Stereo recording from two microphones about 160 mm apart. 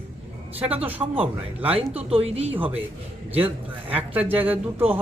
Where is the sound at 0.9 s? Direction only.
10° right (ahead or behind).